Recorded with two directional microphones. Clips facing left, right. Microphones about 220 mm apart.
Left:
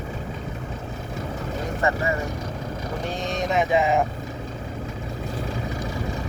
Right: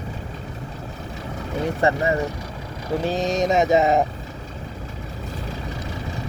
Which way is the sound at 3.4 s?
40° right (ahead or behind).